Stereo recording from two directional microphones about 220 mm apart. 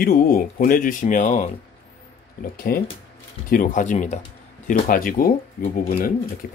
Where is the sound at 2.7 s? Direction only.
45° left (ahead or behind).